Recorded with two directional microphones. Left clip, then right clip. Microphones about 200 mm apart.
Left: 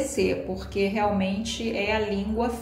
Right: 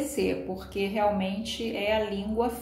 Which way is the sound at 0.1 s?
15° right (ahead or behind).